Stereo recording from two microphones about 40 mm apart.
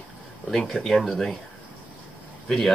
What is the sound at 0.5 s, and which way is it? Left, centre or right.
Speech, centre.